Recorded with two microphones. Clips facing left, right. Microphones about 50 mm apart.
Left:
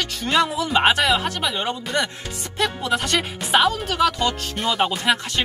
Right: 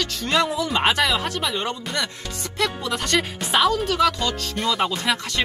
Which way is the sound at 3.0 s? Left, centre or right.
Centre.